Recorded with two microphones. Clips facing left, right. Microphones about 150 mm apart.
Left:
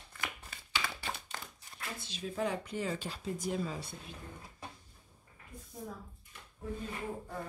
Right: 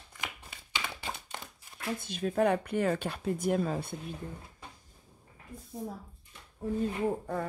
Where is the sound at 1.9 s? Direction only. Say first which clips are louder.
Right 9 dB; 50° right (ahead or behind).